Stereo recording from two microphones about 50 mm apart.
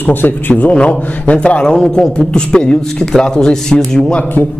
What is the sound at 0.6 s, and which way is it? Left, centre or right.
A man's voice, left.